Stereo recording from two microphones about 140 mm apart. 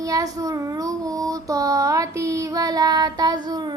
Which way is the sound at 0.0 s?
25° right (ahead or behind).